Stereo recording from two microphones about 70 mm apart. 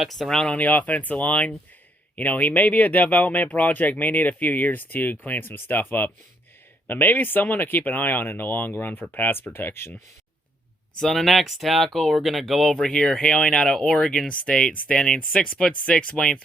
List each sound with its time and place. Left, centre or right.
0.0 s speech: centre
0.5 s speech: left
11.0 s speech: centre